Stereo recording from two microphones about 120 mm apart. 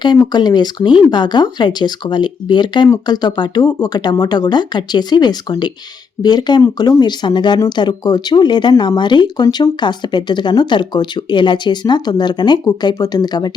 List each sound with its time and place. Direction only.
0.3 s speech: 35° left (ahead or behind)